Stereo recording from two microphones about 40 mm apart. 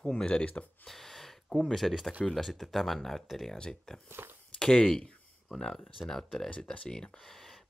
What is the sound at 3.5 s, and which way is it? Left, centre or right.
Speech, left.